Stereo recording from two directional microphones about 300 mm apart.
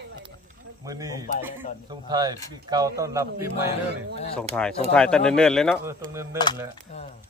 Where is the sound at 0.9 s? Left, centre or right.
Centre.